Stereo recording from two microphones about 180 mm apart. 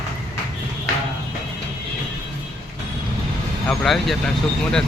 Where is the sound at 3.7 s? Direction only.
Centre (ahead or behind).